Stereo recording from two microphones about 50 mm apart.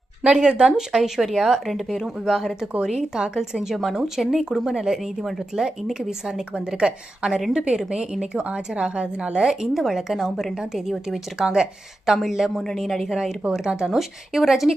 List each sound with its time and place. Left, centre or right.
0.3 s speech: centre
11.3 s speech: centre
13.7 s speech: centre